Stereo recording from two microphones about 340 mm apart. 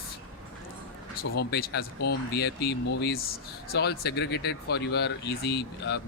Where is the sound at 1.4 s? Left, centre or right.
Left.